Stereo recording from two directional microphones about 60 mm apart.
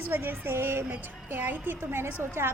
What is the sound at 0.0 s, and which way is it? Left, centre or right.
Speech, right.